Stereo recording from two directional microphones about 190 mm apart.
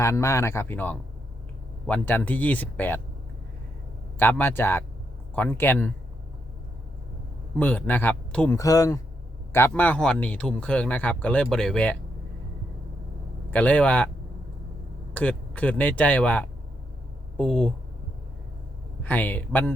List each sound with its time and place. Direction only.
0.0 s speech: 15° left (ahead or behind)
4.2 s speech: 10° left (ahead or behind)
7.6 s speech: 10° left (ahead or behind)
8.5 s speech: 20° left (ahead or behind)
13.5 s speech: 10° left (ahead or behind)
15.1 s speech: 10° left (ahead or behind)
19.0 s speech: 10° left (ahead or behind)